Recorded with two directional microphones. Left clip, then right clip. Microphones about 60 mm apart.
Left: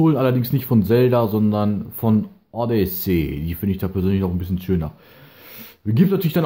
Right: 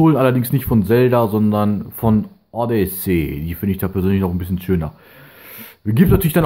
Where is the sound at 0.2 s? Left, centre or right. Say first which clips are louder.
Right 4 dB; right.